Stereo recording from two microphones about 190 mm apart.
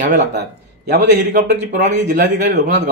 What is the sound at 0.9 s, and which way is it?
A man's voice, 40° right (ahead or behind).